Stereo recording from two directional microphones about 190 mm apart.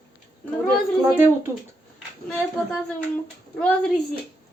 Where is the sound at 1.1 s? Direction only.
10° right (ahead or behind).